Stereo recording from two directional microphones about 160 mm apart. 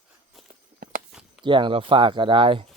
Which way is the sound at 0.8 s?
60° right (ahead or behind).